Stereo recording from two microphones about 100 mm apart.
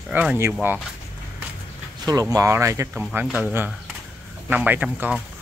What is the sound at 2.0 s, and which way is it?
Speech, 35° right (ahead or behind).